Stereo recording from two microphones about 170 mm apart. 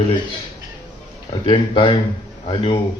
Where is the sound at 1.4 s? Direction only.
30° left (ahead or behind).